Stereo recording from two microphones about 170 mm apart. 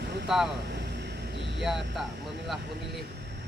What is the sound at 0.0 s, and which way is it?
Vehicle, 80° right.